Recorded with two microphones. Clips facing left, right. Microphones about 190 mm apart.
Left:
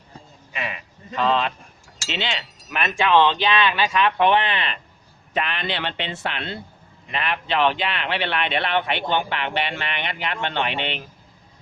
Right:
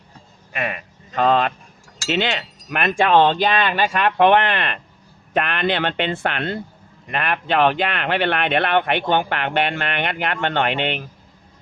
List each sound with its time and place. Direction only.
0.5 s speech: 55° right (ahead or behind)